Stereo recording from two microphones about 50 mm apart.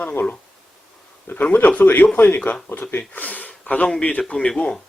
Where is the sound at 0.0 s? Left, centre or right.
Left.